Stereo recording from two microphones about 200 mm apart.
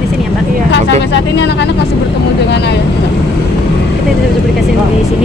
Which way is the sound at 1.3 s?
60° left (ahead or behind).